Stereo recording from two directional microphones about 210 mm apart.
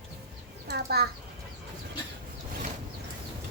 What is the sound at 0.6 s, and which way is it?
Speech, 50° right (ahead or behind).